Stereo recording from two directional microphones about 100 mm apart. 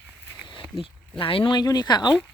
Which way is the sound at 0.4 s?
60° left (ahead or behind).